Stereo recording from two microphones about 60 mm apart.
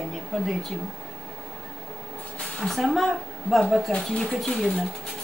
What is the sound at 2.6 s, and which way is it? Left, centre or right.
Speech, centre.